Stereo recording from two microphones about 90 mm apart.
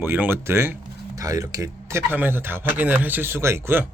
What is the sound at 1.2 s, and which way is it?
Speech, 40° right (ahead or behind).